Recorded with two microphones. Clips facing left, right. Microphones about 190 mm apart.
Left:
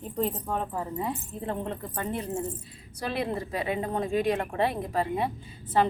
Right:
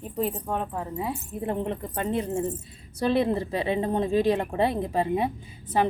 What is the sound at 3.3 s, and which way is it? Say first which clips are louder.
Speech: right 4 dB; 25° right (ahead or behind).